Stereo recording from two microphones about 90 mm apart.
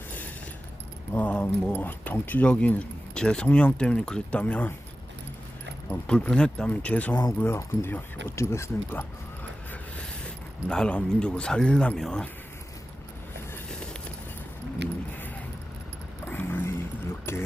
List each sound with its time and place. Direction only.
1.1 s speech: 15° left (ahead or behind)
6.1 s speech: 10° left (ahead or behind)
10.0 s speech: 10° left (ahead or behind)
16.2 s vehicle: 20° left (ahead or behind)
17.3 s a sound: 25° left (ahead or behind)